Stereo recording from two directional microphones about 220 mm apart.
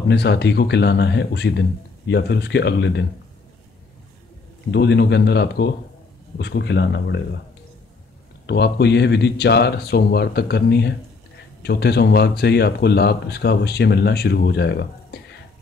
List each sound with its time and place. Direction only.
0.1 s speech: 50° left (ahead or behind)
4.6 s speech: 50° left (ahead or behind)
8.5 s speech: 50° left (ahead or behind)